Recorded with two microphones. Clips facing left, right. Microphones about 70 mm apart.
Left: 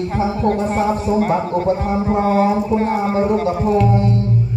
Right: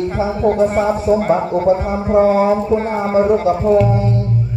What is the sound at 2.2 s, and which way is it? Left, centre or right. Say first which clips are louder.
Speech: right 2 dB; right.